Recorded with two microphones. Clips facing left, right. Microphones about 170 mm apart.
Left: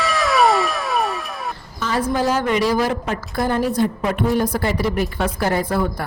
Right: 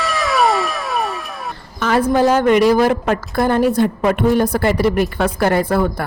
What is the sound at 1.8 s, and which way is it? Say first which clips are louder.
A woman's voice: right 6 dB; 60° right (ahead or behind).